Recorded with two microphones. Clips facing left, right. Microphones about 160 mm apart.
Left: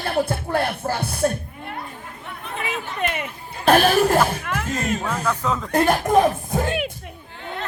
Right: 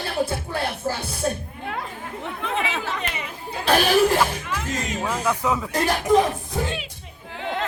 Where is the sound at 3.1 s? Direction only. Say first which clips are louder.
Left 1 dB; 55° left (ahead or behind).